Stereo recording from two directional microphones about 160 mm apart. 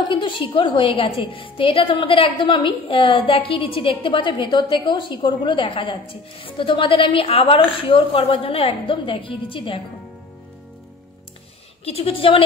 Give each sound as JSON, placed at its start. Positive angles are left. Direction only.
{"t": 0.0, "sound": "a woman's voice", "side_deg": 30}
{"t": 11.8, "sound": "a woman's voice", "side_deg": 35}